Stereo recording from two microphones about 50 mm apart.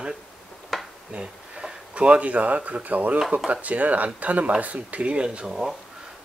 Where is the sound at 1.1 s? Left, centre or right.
Right.